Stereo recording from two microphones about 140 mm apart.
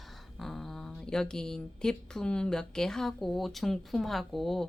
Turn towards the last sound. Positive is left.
turn(degrees=0)  # may be behind; listen again after turning